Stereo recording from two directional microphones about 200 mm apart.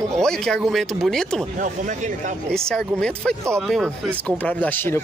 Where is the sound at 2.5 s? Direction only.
5° left (ahead or behind).